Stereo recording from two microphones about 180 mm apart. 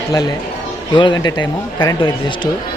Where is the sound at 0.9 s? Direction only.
25° left (ahead or behind).